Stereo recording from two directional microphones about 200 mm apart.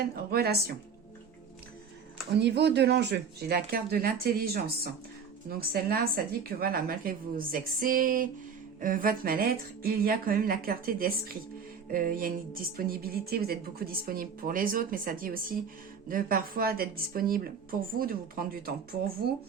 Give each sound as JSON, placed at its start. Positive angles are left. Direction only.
{"t": 0.0, "sound": "speech", "side_deg": -50}
{"t": 2.4, "sound": "speech", "side_deg": -55}